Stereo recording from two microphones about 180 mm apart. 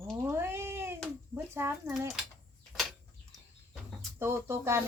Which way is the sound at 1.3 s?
15° right (ahead or behind).